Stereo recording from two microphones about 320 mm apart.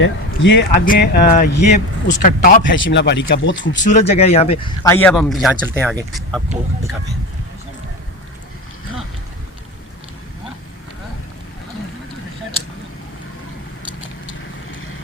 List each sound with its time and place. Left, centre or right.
0.0 s a man's voice: left
2.7 s speech: left
3.8 s speech: left; by 6.4 s centre